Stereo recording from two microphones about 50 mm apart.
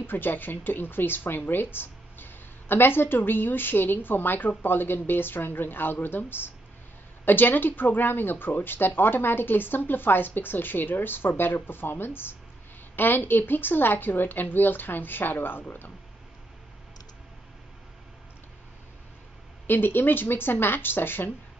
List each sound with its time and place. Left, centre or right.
0.0 s a woman's voice: left
19.6 s a woman's voice: left